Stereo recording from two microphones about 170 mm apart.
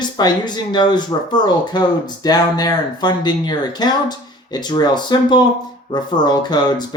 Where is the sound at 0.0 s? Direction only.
25° left (ahead or behind).